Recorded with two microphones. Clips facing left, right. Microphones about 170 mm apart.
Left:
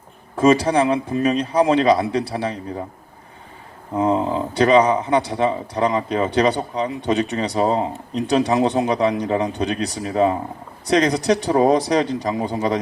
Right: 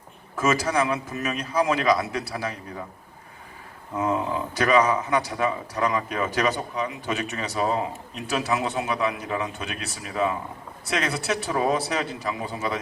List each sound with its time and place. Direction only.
0.3 s speech: 30° left (ahead or behind)
3.9 s speech: 30° left (ahead or behind)